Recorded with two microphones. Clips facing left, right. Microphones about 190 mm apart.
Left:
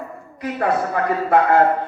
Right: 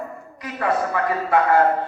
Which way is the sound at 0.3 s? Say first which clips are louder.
Left 2 dB; 50° left (ahead or behind).